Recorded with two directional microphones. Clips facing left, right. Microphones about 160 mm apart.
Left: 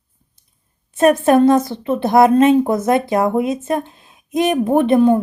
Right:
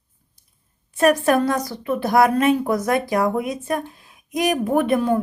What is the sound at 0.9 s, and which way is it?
A woman's voice, 25° left (ahead or behind).